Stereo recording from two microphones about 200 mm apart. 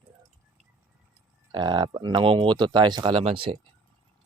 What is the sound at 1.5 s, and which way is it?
Speech, 25° right (ahead or behind).